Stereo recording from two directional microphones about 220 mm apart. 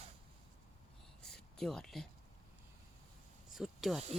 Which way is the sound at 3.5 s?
Centre (ahead or behind).